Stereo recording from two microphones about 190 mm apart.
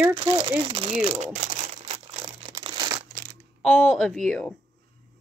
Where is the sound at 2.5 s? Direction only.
20° right (ahead or behind).